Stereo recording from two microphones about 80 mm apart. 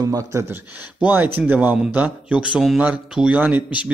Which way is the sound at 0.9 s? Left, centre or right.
Centre.